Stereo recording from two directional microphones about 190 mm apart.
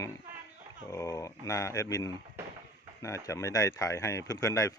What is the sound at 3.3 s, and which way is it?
Speech, 15° left (ahead or behind).